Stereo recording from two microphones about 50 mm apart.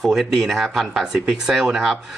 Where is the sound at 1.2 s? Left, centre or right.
Centre.